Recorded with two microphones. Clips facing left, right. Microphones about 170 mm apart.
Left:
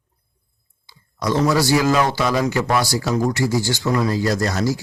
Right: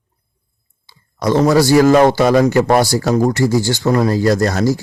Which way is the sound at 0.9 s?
55° right (ahead or behind).